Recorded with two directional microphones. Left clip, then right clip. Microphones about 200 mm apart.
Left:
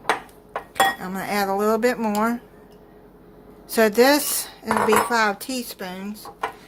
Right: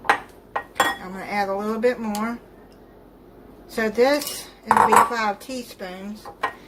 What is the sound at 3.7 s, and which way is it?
Speech, 45° left (ahead or behind).